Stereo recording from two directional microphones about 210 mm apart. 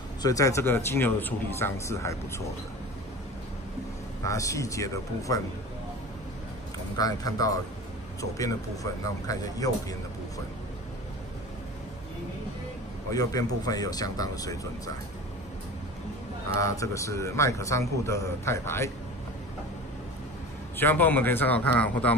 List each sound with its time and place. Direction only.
0.2 s speech: 15° left (ahead or behind)
4.2 s speech: 15° left (ahead or behind)
7.0 s speech: 15° left (ahead or behind)
13.1 s speech: 15° left (ahead or behind)
16.5 s speech: 15° left (ahead or behind)
20.7 s speech: 10° left (ahead or behind)